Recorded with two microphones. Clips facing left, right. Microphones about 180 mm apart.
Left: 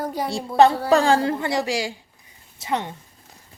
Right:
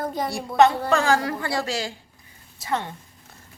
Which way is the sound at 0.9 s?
30° left (ahead or behind).